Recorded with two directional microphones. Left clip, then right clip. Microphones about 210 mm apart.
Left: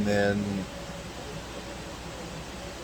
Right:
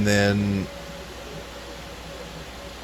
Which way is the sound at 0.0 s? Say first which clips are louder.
Right 4 dB; 45° right (ahead or behind).